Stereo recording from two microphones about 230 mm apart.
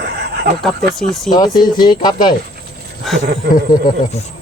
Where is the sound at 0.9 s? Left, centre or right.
Centre.